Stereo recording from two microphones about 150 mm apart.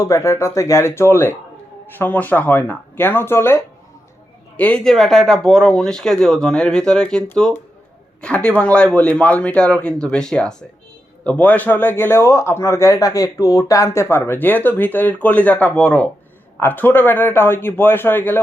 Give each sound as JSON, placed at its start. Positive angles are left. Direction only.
{"t": 0.0, "sound": "speech", "side_deg": 20}